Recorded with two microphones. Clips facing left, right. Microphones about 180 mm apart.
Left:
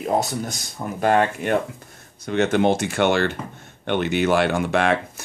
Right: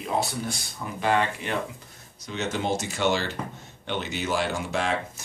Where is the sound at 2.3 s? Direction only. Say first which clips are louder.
Left 9 dB; 60° left (ahead or behind).